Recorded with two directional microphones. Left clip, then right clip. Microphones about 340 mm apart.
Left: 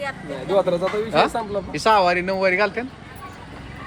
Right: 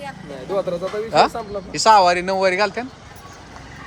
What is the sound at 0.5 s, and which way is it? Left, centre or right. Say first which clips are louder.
Speech: left 3 dB; left.